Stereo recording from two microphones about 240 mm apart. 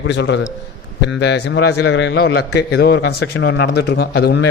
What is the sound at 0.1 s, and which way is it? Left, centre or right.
A man's voice, left.